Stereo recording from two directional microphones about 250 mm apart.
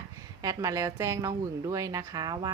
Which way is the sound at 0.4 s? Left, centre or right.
Centre.